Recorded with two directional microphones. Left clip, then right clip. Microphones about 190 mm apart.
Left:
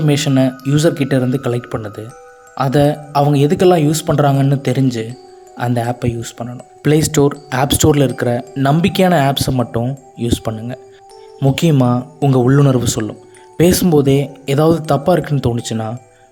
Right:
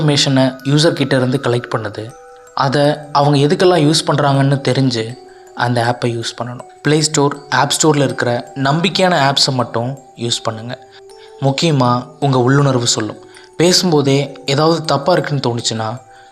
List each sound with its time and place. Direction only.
0.0 s speech: 35° left (ahead or behind)